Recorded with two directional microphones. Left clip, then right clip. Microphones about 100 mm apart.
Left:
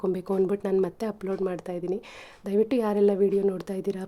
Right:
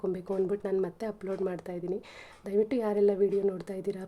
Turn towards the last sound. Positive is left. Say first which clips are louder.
# left 4 dB
turn(degrees=35)  # may be behind; listen again after turning